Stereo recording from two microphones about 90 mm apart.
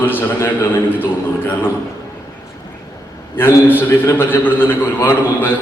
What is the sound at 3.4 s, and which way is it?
A man's voice, 25° left (ahead or behind).